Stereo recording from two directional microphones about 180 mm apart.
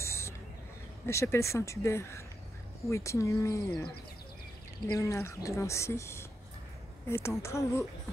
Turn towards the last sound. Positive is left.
turn(degrees=15)  # may be behind; listen again after turning